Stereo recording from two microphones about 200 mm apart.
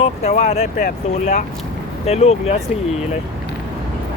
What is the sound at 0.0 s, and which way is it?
Speech, 30° left (ahead or behind).